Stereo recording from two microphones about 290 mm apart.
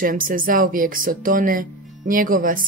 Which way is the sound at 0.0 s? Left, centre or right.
Right.